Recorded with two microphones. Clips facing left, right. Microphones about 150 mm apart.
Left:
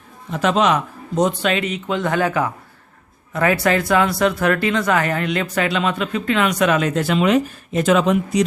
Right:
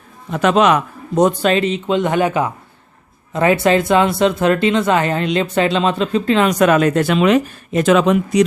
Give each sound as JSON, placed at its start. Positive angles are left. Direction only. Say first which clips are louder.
{"t": 0.3, "sound": "a man's voice", "louder": "right 4 dB", "side_deg": -65}
{"t": 1.4, "sound": "speech", "louder": "right 5 dB", "side_deg": -35}